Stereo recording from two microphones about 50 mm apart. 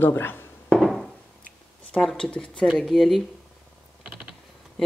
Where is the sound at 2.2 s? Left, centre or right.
Centre.